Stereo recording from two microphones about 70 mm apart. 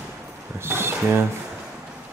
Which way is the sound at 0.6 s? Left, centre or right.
Right.